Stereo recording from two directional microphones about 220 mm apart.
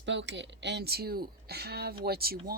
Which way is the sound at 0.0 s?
55° right (ahead or behind).